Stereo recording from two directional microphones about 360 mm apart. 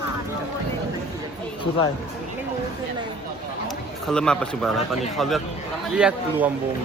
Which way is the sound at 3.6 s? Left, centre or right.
Centre.